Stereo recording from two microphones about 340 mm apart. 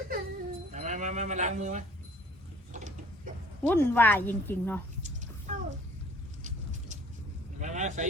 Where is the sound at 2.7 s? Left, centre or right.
Right.